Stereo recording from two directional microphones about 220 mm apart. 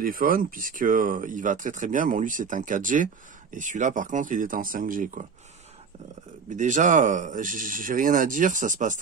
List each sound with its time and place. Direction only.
0.0 s speech: 40° right (ahead or behind)
6.5 s speech: 35° right (ahead or behind)